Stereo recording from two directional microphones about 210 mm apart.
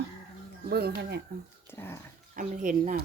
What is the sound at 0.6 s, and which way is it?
Speech, 50° right (ahead or behind).